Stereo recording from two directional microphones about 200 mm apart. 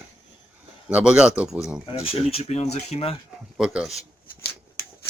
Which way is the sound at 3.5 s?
5° right (ahead or behind).